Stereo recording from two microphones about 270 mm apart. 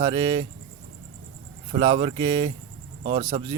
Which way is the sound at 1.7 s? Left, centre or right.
Centre.